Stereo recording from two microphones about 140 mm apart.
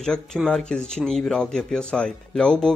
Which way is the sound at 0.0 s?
5° left (ahead or behind).